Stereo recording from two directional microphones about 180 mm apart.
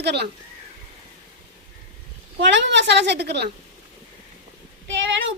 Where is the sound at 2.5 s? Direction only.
75° right (ahead or behind).